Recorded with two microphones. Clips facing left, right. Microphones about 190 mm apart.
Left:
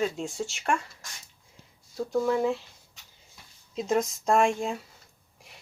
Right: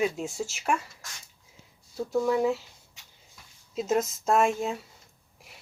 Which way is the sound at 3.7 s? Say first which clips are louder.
Even; 5° right (ahead or behind).